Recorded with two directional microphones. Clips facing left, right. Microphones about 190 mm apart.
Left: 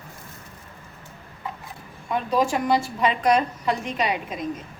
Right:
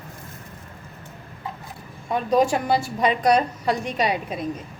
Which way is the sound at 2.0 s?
35° right (ahead or behind).